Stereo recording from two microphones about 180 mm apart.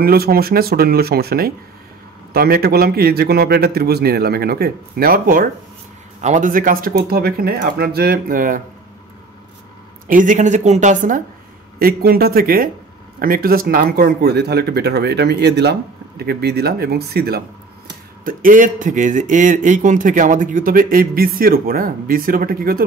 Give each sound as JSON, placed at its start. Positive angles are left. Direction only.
{"t": 0.0, "sound": "speech", "side_deg": -55}
{"t": 10.0, "sound": "speech", "side_deg": -45}
{"t": 11.8, "sound": "speech", "side_deg": -60}
{"t": 18.2, "sound": "speech", "side_deg": -50}